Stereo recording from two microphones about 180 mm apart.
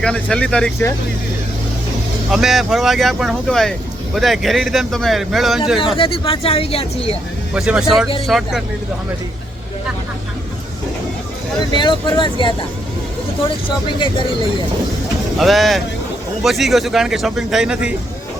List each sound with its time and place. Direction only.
0.0 s speech: 5° left (ahead or behind)
2.3 s speech: centre (ahead or behind)
6.0 s speech: 30° left (ahead or behind)
7.5 s speech: 5° right (ahead or behind)
11.7 s speech: 25° left (ahead or behind)
13.7 s speech: 25° left (ahead or behind)
15.4 s speech: centre (ahead or behind)